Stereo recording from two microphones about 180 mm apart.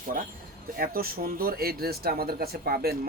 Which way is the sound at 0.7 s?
55° right (ahead or behind).